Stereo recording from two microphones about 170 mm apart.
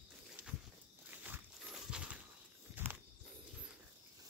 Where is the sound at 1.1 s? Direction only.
10° right (ahead or behind).